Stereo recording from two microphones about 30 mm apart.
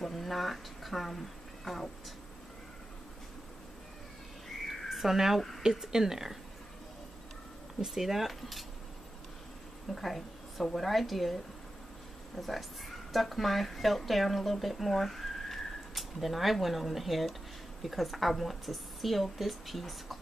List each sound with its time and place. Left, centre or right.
0.0 s a sound: centre
4.9 s speech: centre
7.8 s speech: centre
9.9 s a woman's voice: centre
12.4 s speech: centre
15.9 s speech: centre